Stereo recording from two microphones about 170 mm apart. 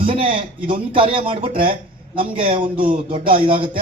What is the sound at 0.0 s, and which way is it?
A man's voice, 30° right (ahead or behind).